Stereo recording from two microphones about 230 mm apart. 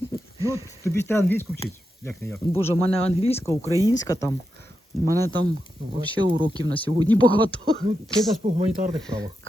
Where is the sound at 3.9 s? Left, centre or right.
Centre.